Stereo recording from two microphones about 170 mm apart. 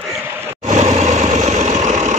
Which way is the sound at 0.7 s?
45° right (ahead or behind).